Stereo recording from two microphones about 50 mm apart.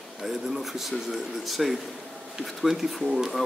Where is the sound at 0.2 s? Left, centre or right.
Centre.